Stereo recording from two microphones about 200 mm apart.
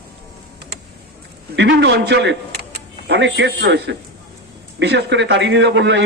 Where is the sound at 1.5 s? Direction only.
60° right (ahead or behind).